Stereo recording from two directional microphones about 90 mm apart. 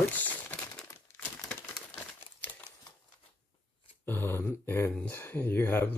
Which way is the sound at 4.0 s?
25° left (ahead or behind).